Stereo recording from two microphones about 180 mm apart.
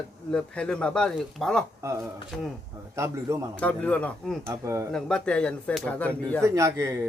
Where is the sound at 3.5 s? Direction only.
10° left (ahead or behind).